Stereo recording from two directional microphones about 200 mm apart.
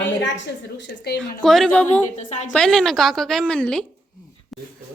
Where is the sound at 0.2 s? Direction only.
65° left (ahead or behind).